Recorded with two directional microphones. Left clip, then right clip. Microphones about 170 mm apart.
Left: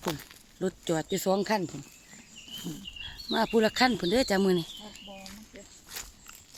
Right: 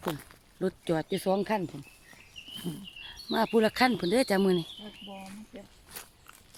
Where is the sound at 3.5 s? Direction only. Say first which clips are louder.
Even; centre (ahead or behind).